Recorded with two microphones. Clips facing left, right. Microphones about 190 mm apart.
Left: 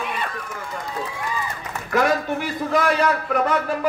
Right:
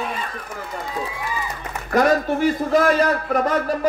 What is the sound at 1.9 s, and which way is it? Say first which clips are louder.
A man's voice: right 3 dB; 40° right (ahead or behind).